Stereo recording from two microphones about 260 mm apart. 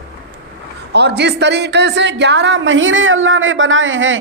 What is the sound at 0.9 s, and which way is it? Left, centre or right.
A woman's voice, right.